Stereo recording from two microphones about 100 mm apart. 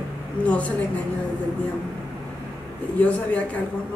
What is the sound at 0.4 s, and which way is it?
Speech, 15° left (ahead or behind).